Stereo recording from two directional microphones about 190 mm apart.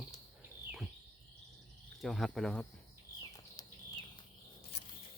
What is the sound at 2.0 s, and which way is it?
Speech, centre (ahead or behind).